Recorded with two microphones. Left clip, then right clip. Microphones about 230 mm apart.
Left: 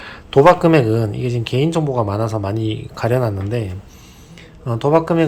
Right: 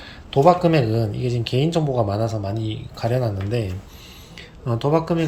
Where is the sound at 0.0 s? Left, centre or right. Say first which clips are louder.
Left 7 dB; centre.